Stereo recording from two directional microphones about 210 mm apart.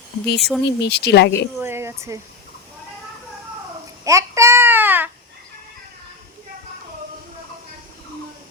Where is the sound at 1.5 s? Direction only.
10° right (ahead or behind).